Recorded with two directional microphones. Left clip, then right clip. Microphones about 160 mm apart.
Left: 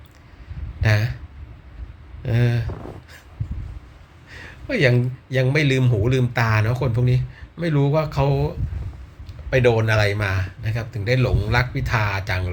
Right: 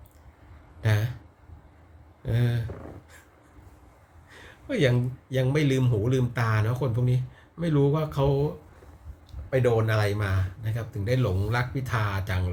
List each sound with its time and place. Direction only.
0.8 s speech: 15° right (ahead or behind)
2.2 s speech: 15° right (ahead or behind)
4.7 s speech: 15° right (ahead or behind)
9.6 s speech: 5° right (ahead or behind)
9.9 s speech: 15° right (ahead or behind)